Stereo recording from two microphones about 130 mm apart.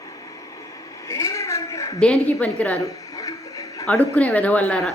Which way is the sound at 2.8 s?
25° left (ahead or behind).